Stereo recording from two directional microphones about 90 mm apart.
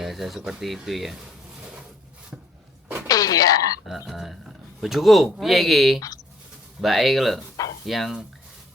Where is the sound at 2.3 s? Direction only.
10° right (ahead or behind).